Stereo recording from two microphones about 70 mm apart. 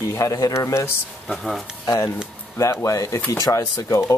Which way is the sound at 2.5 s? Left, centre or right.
Left.